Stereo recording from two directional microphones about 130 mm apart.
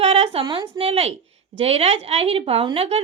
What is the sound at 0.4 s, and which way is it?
A woman's voice, 40° right (ahead or behind).